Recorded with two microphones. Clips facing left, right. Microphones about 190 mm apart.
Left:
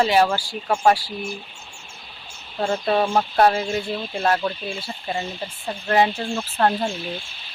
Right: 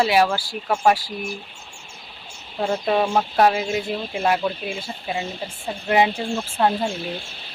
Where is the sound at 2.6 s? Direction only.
5° right (ahead or behind).